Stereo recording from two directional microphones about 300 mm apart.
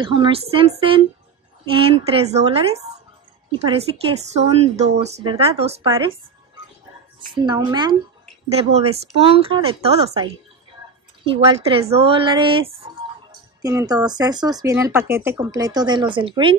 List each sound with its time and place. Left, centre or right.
0.0 s speech: centre
7.2 s speech: centre